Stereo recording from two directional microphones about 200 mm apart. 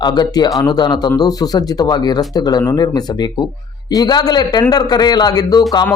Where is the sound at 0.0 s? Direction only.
20° left (ahead or behind).